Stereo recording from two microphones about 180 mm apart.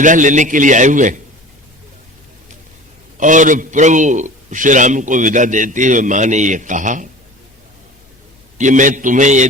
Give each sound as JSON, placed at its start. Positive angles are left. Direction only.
{"t": 0.0, "sound": "a man's voice", "side_deg": -45}
{"t": 3.2, "sound": "a man's voice", "side_deg": -45}
{"t": 8.5, "sound": "a man's voice", "side_deg": -45}